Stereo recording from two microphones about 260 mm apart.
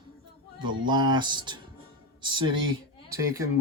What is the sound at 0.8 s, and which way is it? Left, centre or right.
Speech, centre.